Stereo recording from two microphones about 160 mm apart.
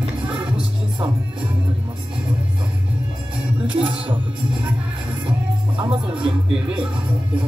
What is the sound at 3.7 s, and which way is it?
Music, 30° right (ahead or behind).